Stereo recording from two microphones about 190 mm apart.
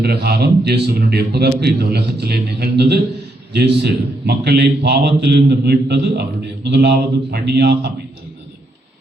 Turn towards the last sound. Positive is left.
turn(degrees=-60)  # may be behind; listen again after turning